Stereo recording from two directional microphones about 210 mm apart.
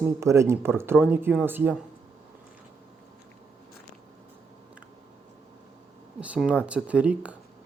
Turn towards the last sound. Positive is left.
turn(degrees=-5)  # may be behind; listen again after turning